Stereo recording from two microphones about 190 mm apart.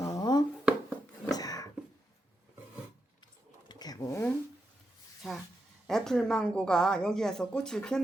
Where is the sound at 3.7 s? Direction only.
20° left (ahead or behind).